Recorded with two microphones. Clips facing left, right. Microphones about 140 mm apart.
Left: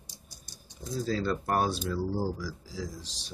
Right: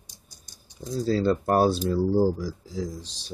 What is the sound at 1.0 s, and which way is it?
Speech, 35° right (ahead or behind).